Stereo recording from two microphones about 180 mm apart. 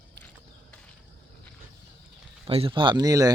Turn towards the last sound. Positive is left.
turn(degrees=-20)  # may be behind; listen again after turning